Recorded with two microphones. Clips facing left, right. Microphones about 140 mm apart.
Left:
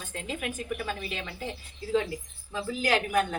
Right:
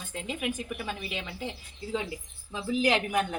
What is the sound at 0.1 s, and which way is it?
A woman's voice, 15° right (ahead or behind).